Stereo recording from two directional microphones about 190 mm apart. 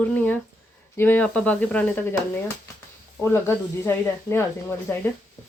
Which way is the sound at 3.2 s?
10° left (ahead or behind).